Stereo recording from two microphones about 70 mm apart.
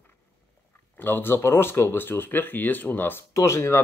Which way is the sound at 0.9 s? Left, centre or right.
Left.